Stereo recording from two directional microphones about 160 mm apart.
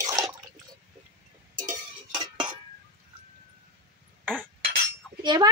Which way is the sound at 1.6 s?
20° right (ahead or behind).